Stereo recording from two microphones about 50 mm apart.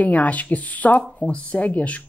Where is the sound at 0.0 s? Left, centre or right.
Left.